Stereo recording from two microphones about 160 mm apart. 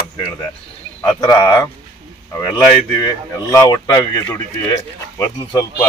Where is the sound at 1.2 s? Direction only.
20° left (ahead or behind).